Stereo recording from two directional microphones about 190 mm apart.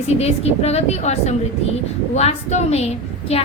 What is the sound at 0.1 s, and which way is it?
A woman's voice, 35° left (ahead or behind).